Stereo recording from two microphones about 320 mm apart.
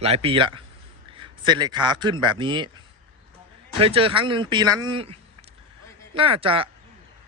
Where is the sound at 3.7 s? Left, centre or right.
Centre.